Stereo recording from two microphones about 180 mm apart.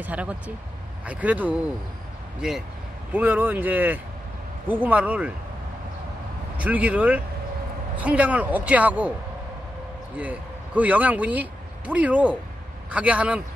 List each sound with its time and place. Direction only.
0.0 s a man's voice: 10° right (ahead or behind)
6.6 s a man's voice: 10° right (ahead or behind)
10.1 s a man's voice: 10° right (ahead or behind)